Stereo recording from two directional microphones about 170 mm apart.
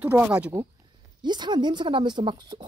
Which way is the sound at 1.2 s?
25° right (ahead or behind).